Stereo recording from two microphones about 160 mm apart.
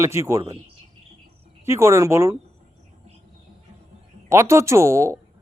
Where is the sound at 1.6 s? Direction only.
15° right (ahead or behind).